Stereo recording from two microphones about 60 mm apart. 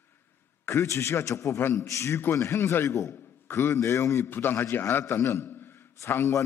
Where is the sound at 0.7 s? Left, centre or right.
Left.